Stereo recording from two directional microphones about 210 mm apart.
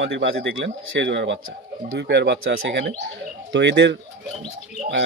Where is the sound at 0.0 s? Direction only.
60° right (ahead or behind).